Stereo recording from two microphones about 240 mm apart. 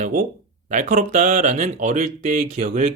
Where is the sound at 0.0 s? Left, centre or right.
Right.